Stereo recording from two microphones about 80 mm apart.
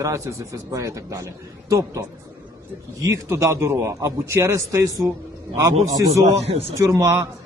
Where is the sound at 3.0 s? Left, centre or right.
Right.